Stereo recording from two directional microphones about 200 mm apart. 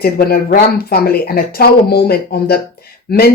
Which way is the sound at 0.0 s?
50° left (ahead or behind).